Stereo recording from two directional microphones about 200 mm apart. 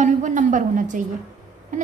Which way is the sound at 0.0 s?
40° right (ahead or behind).